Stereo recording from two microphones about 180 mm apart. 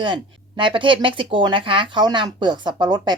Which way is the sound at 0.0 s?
25° right (ahead or behind).